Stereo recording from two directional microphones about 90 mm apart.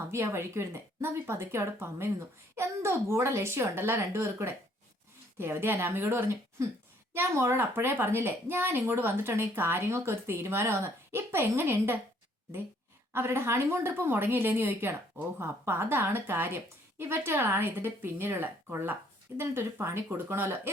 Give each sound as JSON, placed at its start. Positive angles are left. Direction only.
{"t": 0.1, "sound": "a woman's voice", "side_deg": -30}
{"t": 13.1, "sound": "a woman's voice", "side_deg": -30}